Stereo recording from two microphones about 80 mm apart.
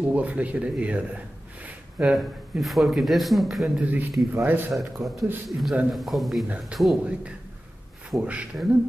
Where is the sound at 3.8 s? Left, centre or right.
Centre.